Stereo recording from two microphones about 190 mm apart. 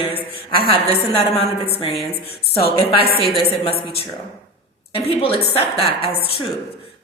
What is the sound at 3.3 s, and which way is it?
A woman's voice, 30° left (ahead or behind).